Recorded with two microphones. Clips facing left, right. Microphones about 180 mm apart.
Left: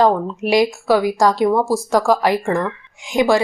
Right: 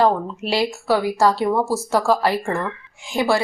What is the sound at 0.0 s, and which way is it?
Speech, 15° left (ahead or behind).